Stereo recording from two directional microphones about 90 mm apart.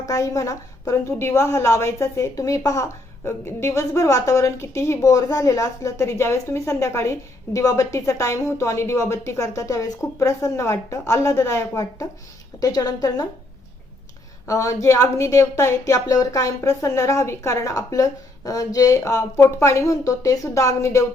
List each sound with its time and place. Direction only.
0.0 s a woman's voice: 35° left (ahead or behind)
12.5 s a woman's voice: 45° left (ahead or behind)
14.4 s a woman's voice: 35° left (ahead or behind)